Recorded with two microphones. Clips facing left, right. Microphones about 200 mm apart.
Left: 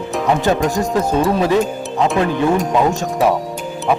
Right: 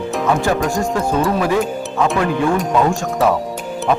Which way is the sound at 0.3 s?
20° left (ahead or behind).